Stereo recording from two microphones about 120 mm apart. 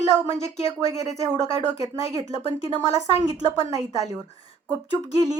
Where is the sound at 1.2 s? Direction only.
30° right (ahead or behind).